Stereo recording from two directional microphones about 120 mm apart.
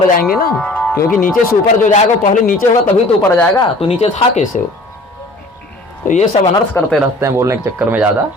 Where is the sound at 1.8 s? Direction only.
90° left.